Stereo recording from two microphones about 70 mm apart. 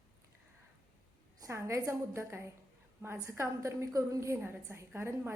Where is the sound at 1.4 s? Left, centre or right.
Right.